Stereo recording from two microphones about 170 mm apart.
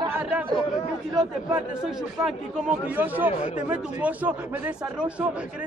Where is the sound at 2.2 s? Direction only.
5° right (ahead or behind).